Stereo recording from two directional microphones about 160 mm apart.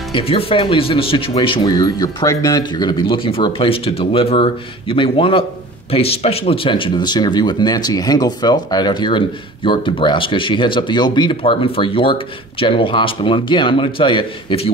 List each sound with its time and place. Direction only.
0.1 s speech: 35° left (ahead or behind)